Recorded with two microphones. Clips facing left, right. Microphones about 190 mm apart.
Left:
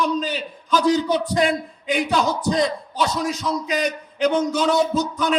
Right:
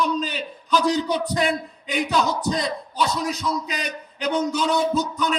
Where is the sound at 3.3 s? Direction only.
45° left (ahead or behind).